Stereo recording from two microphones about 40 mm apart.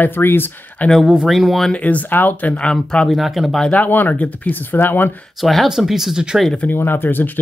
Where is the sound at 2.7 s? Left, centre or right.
Left.